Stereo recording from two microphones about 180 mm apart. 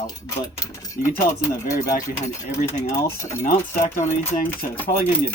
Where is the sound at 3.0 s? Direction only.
15° left (ahead or behind).